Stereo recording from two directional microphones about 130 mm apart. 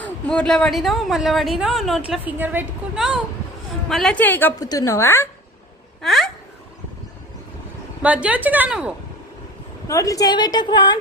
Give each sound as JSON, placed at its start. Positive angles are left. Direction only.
{"t": 0.0, "sound": "a woman's voice", "side_deg": 5}
{"t": 4.6, "sound": "a woman's voice", "side_deg": 25}
{"t": 6.0, "sound": "speech", "side_deg": 0}
{"t": 8.0, "sound": "a woman's voice", "side_deg": -10}
{"t": 9.8, "sound": "a woman's voice", "side_deg": 25}